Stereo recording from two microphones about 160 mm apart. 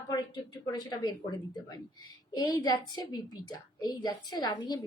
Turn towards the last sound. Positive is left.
turn(degrees=25)  # may be behind; listen again after turning